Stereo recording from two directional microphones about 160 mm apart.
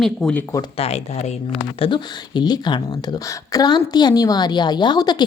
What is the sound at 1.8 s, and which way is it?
A woman's voice, 30° left (ahead or behind).